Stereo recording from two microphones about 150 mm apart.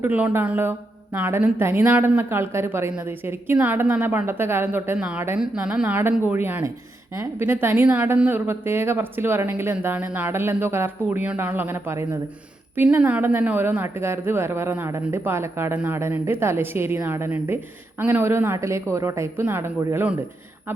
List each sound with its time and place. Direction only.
0.0 s a woman's voice: 10° right (ahead or behind)